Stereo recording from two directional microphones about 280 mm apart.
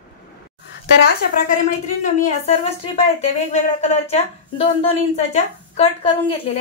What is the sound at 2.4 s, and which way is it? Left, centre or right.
Speech, left.